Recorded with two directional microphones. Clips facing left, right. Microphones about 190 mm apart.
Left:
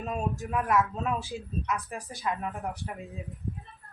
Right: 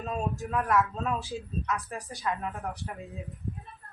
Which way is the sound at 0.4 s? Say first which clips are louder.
Even; 15° left (ahead or behind).